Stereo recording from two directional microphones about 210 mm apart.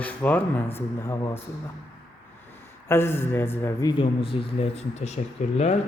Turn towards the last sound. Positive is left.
turn(degrees=30)  # may be behind; listen again after turning